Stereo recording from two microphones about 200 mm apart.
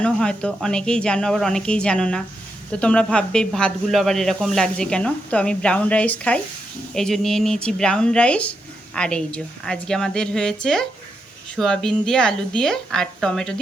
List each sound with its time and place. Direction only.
0.0 s speech: 5° left (ahead or behind)